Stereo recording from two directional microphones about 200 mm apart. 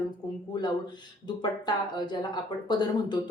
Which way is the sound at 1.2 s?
20° left (ahead or behind).